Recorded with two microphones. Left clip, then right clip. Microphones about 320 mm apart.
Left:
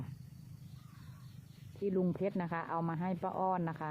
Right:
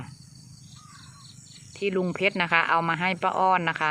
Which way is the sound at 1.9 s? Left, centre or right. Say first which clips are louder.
Right 10 dB; centre.